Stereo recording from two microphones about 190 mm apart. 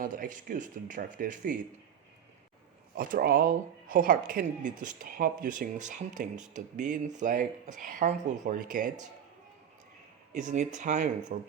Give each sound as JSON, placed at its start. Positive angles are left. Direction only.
{"t": 0.0, "sound": "speech", "side_deg": -45}
{"t": 2.9, "sound": "speech", "side_deg": -50}
{"t": 10.3, "sound": "speech", "side_deg": -40}